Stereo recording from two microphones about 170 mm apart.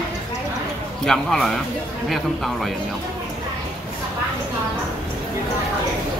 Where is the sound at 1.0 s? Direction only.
5° left (ahead or behind).